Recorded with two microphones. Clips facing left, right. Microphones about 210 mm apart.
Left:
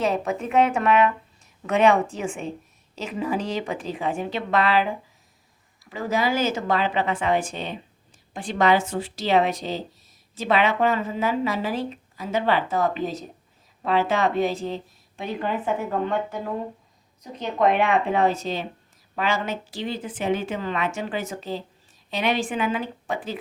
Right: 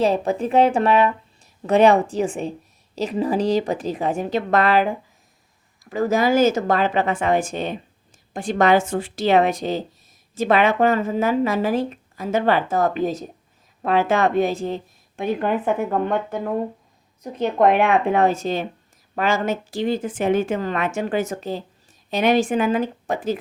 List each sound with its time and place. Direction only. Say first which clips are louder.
0.0 s a woman's voice: right 5 dB; 30° right (ahead or behind)